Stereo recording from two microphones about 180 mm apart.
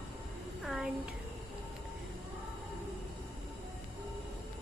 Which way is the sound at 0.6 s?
5° right (ahead or behind).